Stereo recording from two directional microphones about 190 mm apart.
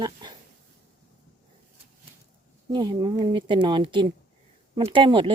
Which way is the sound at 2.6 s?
20° right (ahead or behind).